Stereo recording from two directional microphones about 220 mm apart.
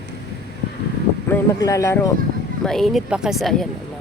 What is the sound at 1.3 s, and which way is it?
Speech, 15° left (ahead or behind).